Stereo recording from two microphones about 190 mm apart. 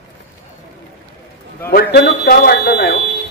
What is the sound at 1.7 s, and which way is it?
A man's voice, 50° left (ahead or behind).